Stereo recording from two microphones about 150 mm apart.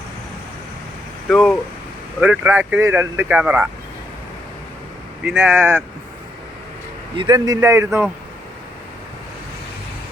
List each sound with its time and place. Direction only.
1.3 s speech: 5° left (ahead or behind)
2.2 s speech: 10° right (ahead or behind)
5.2 s speech: 5° right (ahead or behind)
7.2 s speech: 25° right (ahead or behind)